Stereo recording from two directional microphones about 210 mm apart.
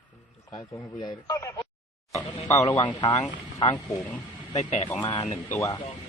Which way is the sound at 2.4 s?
30° left (ahead or behind).